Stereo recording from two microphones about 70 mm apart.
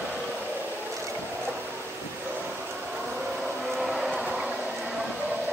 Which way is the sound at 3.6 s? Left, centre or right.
Centre.